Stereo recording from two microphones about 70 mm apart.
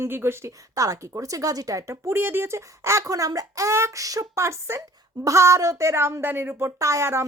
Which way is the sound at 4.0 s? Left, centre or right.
Right.